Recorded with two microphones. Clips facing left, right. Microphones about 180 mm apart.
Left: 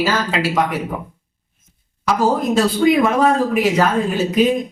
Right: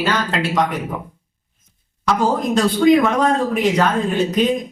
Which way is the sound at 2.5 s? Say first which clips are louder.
Right 3 dB; 5° left (ahead or behind).